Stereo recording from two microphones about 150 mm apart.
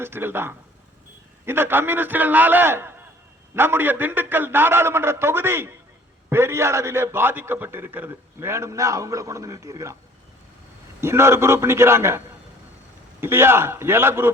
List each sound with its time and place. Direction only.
0.0 s a man's voice: 15° right (ahead or behind)
11.0 s a man's voice: 15° right (ahead or behind)
13.2 s a man's voice: 15° right (ahead or behind)